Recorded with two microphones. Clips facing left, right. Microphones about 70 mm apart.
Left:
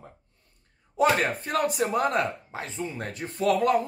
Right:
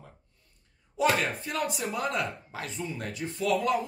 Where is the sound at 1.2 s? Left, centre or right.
Left.